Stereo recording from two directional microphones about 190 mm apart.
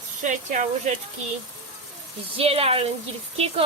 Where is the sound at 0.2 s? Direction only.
40° right (ahead or behind).